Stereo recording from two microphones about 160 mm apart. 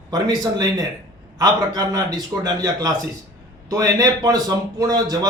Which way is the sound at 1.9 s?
25° right (ahead or behind).